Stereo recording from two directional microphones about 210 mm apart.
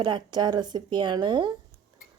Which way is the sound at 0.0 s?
20° right (ahead or behind).